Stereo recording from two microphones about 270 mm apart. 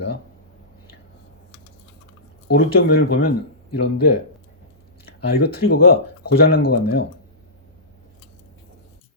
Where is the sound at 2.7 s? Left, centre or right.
Left.